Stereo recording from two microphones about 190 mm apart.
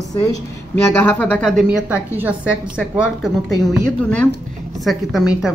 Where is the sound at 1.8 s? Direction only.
10° right (ahead or behind).